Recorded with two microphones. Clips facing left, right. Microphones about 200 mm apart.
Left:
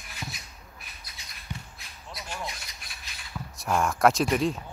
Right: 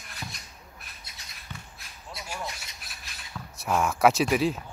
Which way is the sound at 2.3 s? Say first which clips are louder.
Even; 5° right (ahead or behind).